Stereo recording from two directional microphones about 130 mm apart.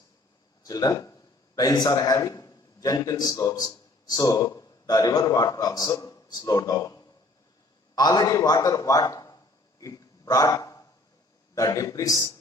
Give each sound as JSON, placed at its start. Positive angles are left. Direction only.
{"t": 0.6, "sound": "a man's voice", "side_deg": 30}
{"t": 9.8, "sound": "hiccup", "side_deg": 25}
{"t": 11.5, "sound": "a man's voice", "side_deg": 25}